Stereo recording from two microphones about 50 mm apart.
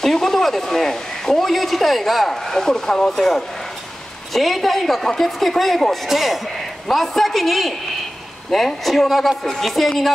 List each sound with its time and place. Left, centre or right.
0.0 s a man's voice: centre